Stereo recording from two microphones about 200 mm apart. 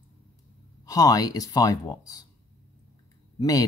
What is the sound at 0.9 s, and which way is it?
Speech, 20° left (ahead or behind).